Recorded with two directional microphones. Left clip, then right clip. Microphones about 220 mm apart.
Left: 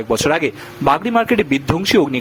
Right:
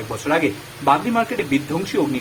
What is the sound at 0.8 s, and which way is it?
Speech, 45° left (ahead or behind).